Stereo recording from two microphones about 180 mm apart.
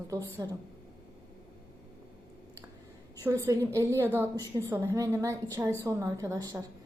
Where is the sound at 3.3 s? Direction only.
15° right (ahead or behind).